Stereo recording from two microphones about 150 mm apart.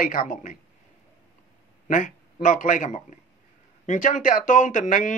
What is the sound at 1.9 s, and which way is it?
Speech, 60° left (ahead or behind).